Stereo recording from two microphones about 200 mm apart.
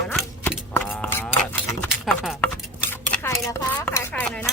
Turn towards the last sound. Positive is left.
turn(degrees=5)  # may be behind; listen again after turning